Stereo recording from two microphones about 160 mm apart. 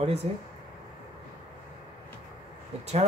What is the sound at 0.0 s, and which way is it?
Speech, 40° right (ahead or behind).